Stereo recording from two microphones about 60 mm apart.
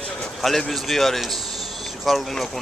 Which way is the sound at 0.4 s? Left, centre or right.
Centre.